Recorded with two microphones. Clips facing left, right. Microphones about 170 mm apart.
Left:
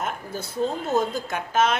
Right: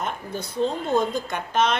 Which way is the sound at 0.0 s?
5° left (ahead or behind).